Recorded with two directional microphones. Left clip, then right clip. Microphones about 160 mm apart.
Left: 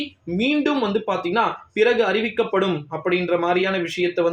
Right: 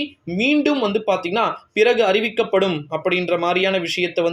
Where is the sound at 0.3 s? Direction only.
30° right (ahead or behind).